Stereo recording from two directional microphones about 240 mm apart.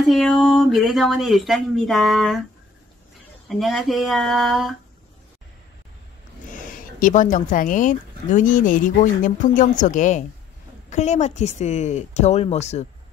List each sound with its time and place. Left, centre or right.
0.0 s speech: centre
3.4 s speech: centre
6.5 s a woman's voice: left